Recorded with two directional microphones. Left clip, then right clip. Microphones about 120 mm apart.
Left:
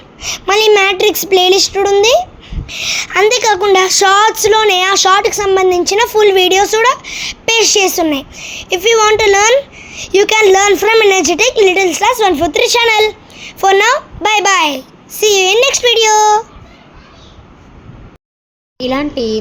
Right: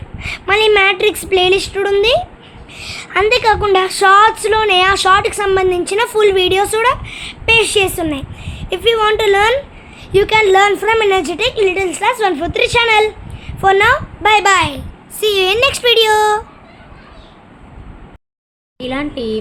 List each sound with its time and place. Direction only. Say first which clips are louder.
0.2 s a sound: left 2 dB; 30° left (ahead or behind)
2.7 s speech: left 4 dB; 55° left (ahead or behind); by 6.3 s 25° left (ahead or behind)
6.3 s a woman's voice: left 4 dB; 35° left (ahead or behind)
10.0 s a woman's voice: left 2 dB; 65° left (ahead or behind); by 16.4 s 50° left (ahead or behind)
18.8 s speech: left 5 dB; 25° left (ahead or behind)